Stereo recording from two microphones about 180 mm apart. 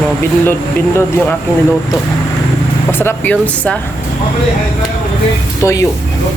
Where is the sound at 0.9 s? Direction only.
15° left (ahead or behind).